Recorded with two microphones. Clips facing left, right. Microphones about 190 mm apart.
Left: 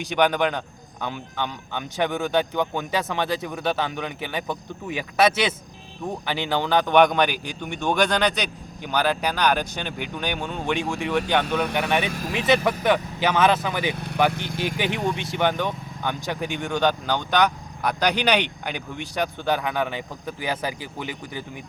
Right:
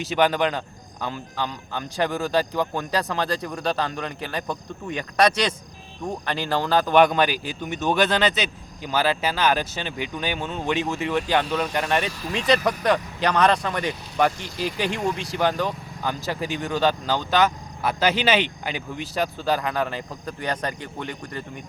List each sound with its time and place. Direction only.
0.0 s speech: centre (ahead or behind)
13.9 s speech: 60° left (ahead or behind)
14.4 s speech: centre (ahead or behind)